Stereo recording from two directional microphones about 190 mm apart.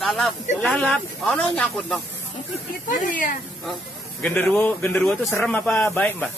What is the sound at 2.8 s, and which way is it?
Speech, 45° left (ahead or behind).